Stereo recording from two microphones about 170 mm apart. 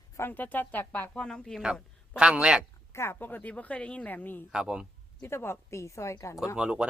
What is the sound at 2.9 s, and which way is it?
Speech, 15° left (ahead or behind).